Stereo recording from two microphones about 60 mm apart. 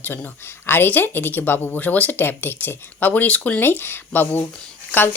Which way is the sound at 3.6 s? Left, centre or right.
Left.